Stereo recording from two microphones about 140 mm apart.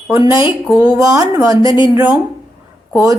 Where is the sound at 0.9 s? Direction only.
25° right (ahead or behind).